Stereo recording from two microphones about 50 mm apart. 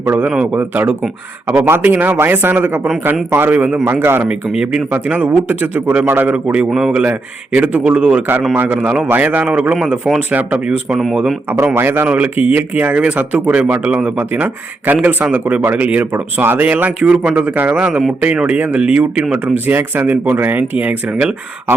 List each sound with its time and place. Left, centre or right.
0.1 s speech: right
4.3 s speech: centre
5.3 s speech: right
6.1 s speech: right
6.3 s a man's voice: right
6.7 s speech: centre
7.0 s a man's voice: right
9.0 s speech: right
10.7 s speech: centre
11.7 s speech: right
12.0 s a man's voice: right
17.7 s a man's voice: right
19.2 s speech: centre
19.7 s speech: right